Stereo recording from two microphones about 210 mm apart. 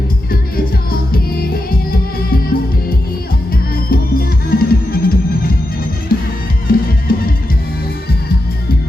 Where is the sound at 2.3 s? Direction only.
45° left (ahead or behind).